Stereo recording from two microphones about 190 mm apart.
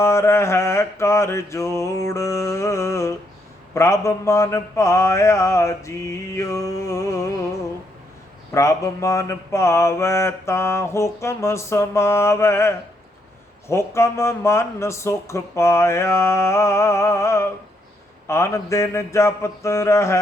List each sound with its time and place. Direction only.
0.0 s mantra: 15° left (ahead or behind)
8.5 s mantra: 15° left (ahead or behind)